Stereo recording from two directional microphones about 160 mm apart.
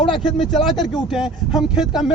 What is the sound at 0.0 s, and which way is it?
Speech, centre (ahead or behind).